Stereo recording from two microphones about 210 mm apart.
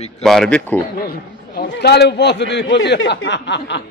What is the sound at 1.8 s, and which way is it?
Speech, 50° left (ahead or behind).